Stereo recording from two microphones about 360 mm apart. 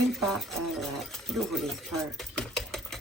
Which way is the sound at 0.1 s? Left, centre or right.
Centre.